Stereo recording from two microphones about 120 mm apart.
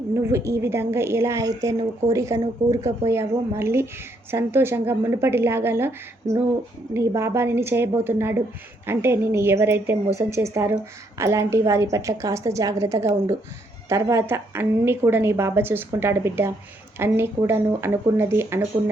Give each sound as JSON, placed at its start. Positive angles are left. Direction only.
{"t": 0.2, "sound": "a woman's voice", "side_deg": -20}